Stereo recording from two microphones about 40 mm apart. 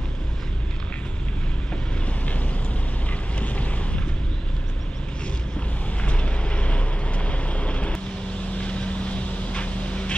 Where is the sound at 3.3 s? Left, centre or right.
Left.